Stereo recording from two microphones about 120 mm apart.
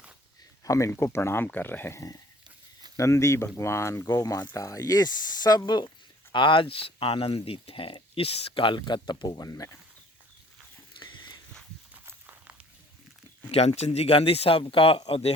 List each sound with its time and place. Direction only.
0.6 s speech: 25° left (ahead or behind)
10.9 s walk: 40° left (ahead or behind)
12.0 s walk: 20° right (ahead or behind)
13.5 s speech: 65° left (ahead or behind); by 15.3 s 45° left (ahead or behind)